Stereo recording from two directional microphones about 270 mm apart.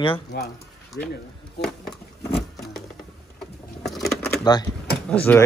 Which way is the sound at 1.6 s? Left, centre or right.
Centre.